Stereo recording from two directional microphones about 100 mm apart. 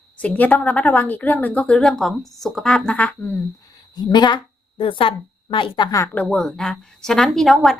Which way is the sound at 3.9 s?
45° left (ahead or behind).